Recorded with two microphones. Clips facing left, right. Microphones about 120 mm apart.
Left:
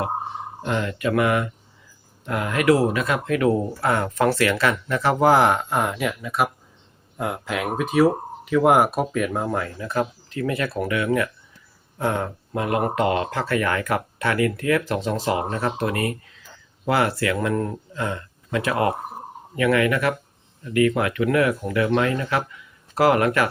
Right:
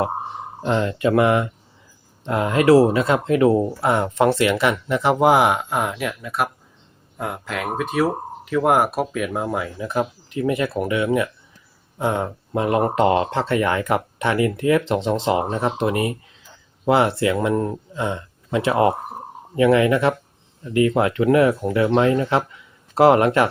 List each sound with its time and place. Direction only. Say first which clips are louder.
0.6 s speech: right 5 dB; 30° right (ahead or behind)